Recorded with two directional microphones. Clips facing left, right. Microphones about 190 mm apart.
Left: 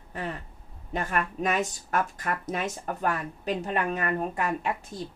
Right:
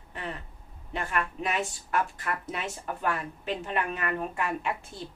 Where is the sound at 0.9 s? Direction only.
40° left (ahead or behind).